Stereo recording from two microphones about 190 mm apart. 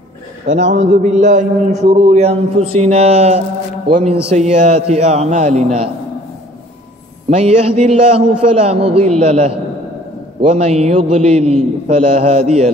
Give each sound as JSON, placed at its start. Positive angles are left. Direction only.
{"t": 0.7, "sound": "a man's voice", "side_deg": -40}
{"t": 7.2, "sound": "a man's voice", "side_deg": -30}